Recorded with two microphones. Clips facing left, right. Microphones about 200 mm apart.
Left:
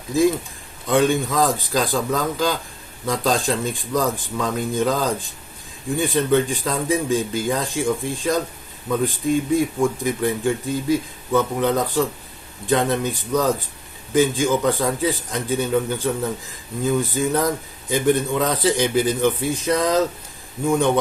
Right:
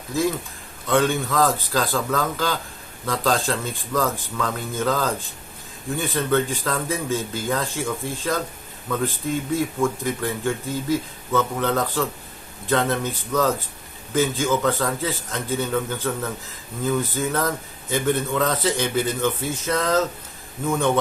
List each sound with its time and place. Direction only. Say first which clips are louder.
0.1 s a man's voice: left 5 dB; 15° left (ahead or behind)
9.6 s a man's voice: left 3 dB; 15° left (ahead or behind)